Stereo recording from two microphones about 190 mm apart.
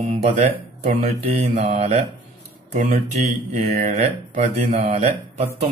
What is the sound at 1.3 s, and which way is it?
Speech, 40° right (ahead or behind).